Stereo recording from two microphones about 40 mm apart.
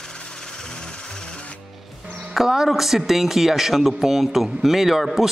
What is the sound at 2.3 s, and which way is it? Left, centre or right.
A man's voice, centre.